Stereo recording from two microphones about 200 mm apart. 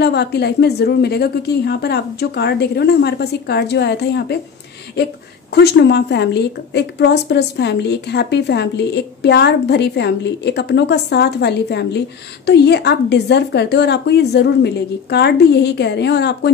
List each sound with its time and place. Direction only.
0.0 s a woman's voice: 55° left (ahead or behind)
5.5 s a woman's voice: 55° left (ahead or behind)